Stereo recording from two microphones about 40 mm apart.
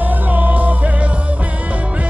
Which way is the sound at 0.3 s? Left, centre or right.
Right.